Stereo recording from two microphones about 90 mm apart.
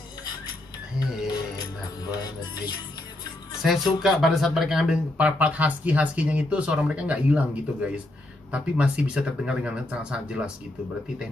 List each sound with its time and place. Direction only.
2.0 s music: 45° left (ahead or behind)
3.6 s speech: centre (ahead or behind)
5.1 s speech: 15° right (ahead or behind)